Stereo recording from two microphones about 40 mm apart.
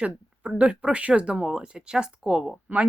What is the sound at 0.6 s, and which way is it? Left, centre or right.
Speech, right.